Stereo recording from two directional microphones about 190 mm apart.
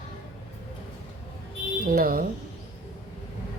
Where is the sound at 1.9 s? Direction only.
50° right (ahead or behind).